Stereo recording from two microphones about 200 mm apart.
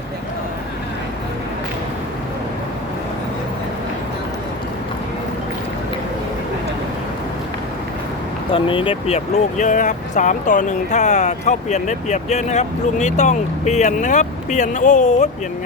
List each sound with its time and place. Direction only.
8.5 s speech: 25° left (ahead or behind)